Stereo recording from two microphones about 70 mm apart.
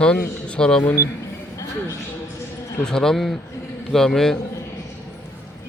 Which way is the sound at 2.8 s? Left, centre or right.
Centre.